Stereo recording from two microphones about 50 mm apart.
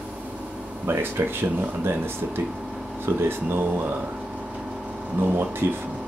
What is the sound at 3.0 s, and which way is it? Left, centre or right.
Speech, right.